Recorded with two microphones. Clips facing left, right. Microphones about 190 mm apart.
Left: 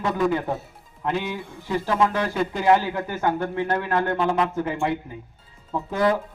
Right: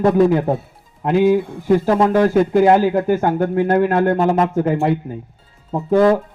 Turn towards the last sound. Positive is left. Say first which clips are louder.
# right 8 dB
turn(degrees=-45)  # may be behind; listen again after turning